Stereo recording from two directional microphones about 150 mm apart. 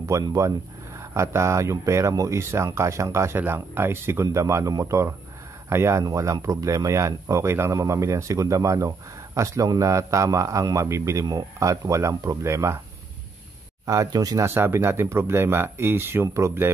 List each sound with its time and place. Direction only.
0.1 s speech: 20° right (ahead or behind)
13.8 s speech: 25° right (ahead or behind)